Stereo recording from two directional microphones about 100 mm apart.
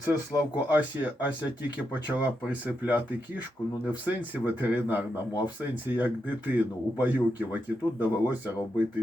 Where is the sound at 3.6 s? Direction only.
20° left (ahead or behind).